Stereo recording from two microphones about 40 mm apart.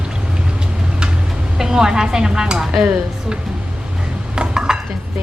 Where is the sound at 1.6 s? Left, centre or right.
Centre.